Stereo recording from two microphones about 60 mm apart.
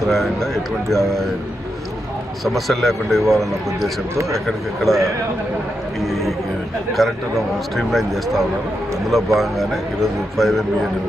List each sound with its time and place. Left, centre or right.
0.1 s a man's voice: centre
2.4 s a man's voice: centre
4.1 s a man's voice: right
4.4 s a man's voice: centre